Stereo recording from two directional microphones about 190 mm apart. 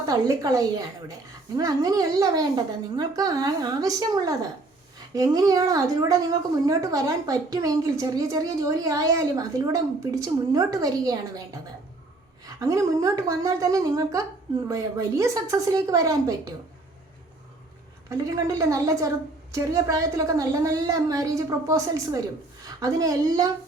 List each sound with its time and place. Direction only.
0.1 s a woman's voice: 20° right (ahead or behind)
18.1 s a woman's voice: 15° right (ahead or behind)